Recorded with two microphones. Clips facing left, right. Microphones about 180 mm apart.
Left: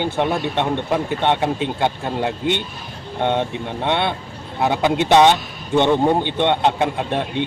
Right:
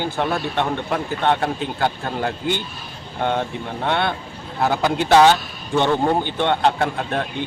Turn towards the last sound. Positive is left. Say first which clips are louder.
# left 3 dB
turn(degrees=20)  # may be behind; listen again after turning